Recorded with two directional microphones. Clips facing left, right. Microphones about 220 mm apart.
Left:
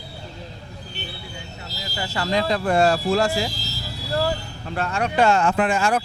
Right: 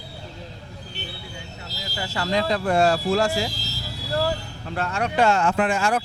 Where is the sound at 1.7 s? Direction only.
10° left (ahead or behind).